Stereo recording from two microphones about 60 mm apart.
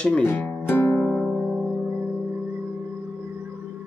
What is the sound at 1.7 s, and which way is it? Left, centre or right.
Music, right.